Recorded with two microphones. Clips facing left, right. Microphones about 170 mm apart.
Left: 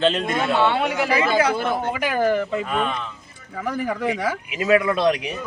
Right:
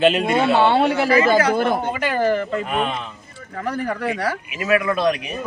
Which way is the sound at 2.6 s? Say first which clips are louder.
Right 1 dB; 20° right (ahead or behind).